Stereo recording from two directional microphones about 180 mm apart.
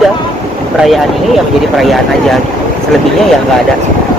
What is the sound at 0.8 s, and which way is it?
Speech, centre (ahead or behind).